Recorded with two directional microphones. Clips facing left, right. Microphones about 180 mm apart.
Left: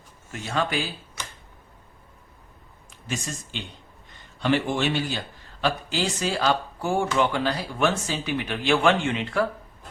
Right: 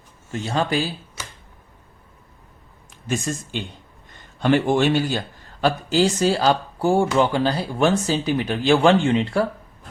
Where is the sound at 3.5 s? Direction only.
50° right (ahead or behind); by 9.5 s 35° right (ahead or behind).